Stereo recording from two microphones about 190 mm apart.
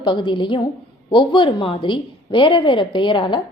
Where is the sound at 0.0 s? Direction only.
25° left (ahead or behind).